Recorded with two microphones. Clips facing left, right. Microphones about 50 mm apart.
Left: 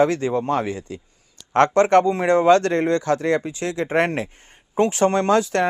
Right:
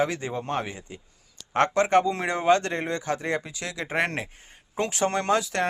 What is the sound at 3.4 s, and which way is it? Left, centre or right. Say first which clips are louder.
Speech: left 8 dB; left.